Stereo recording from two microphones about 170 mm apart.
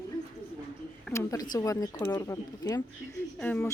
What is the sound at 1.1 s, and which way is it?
Speech, 20° left (ahead or behind).